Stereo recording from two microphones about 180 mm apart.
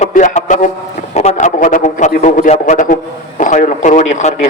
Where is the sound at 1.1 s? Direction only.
40° left (ahead or behind).